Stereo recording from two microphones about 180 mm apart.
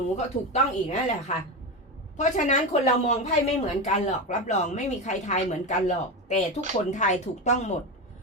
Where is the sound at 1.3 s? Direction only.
45° left (ahead or behind).